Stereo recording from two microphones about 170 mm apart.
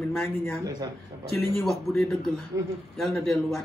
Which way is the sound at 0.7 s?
20° right (ahead or behind).